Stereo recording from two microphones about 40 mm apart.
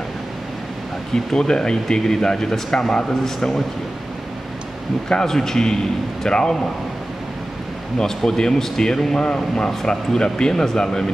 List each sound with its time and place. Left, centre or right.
1.1 s speech: centre
5.2 s speech: centre
8.3 s speech: centre